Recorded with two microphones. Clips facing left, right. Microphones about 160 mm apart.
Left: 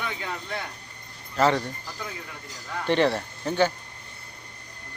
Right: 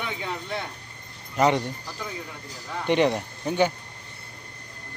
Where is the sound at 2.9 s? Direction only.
15° right (ahead or behind).